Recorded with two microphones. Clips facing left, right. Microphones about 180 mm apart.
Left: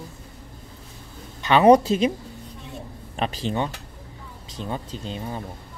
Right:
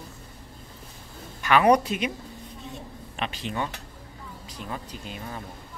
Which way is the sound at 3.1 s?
35° left (ahead or behind).